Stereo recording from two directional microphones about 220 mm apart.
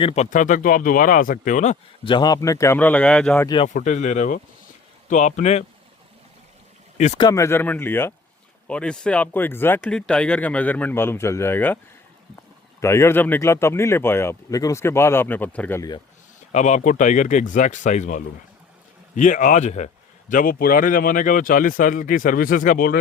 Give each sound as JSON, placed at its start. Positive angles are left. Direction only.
{"t": 0.0, "sound": "speech", "side_deg": 30}
{"t": 2.0, "sound": "speech", "side_deg": 20}
{"t": 3.7, "sound": "speech", "side_deg": 35}
{"t": 6.9, "sound": "speech", "side_deg": 30}
{"t": 7.2, "sound": "speech", "side_deg": 15}
{"t": 12.8, "sound": "speech", "side_deg": 10}
{"t": 16.5, "sound": "speech", "side_deg": 30}